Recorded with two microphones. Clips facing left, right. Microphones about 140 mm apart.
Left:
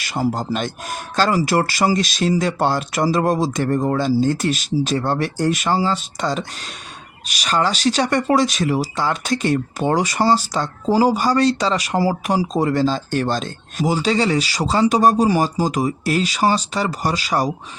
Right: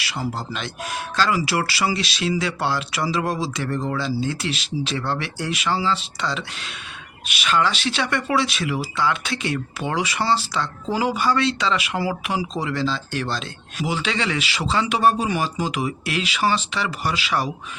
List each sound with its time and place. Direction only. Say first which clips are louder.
0.0 s speech: left 6 dB; 45° left (ahead or behind)